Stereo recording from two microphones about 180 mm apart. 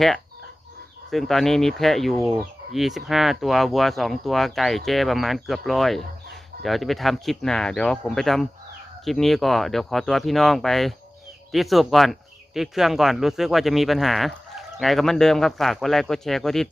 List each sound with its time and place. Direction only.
1.1 s speech: centre (ahead or behind)